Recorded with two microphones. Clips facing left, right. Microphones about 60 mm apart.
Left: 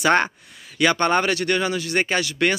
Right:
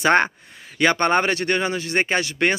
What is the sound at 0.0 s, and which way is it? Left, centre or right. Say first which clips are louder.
Speech: right 1 dB; right.